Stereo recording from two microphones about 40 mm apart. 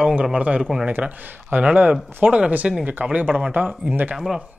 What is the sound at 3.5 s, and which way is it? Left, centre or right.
Speech, right.